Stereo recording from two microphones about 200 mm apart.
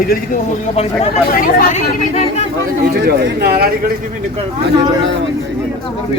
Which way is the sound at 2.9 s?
55° right (ahead or behind).